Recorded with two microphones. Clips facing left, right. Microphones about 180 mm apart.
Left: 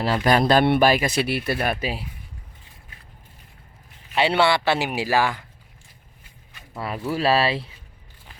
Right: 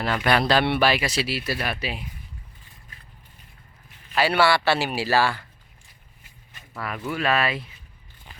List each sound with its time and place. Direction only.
0.0 s speech: 35° left (ahead or behind)
4.1 s a man's voice: 25° left (ahead or behind)
6.7 s speech: 30° left (ahead or behind)